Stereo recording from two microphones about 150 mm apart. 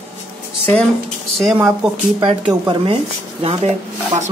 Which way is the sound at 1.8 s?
5° right (ahead or behind).